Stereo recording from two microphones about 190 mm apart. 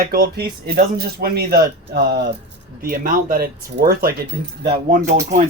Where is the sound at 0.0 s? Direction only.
55° right (ahead or behind).